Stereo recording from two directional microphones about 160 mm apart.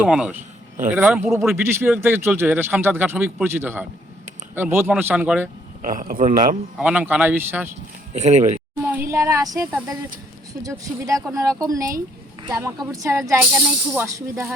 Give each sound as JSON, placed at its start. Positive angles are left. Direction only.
{"t": 0.0, "sound": "a man's voice", "side_deg": -5}
{"t": 2.0, "sound": "a man's voice", "side_deg": -15}
{"t": 5.8, "sound": "a man's voice", "side_deg": -60}
{"t": 6.7, "sound": "a man's voice", "side_deg": -10}
{"t": 8.1, "sound": "speech", "side_deg": -45}
{"t": 8.8, "sound": "a woman's voice", "side_deg": -15}
{"t": 13.4, "sound": "a man's voice", "side_deg": -5}